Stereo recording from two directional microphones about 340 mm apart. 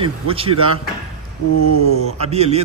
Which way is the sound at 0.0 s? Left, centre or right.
Centre.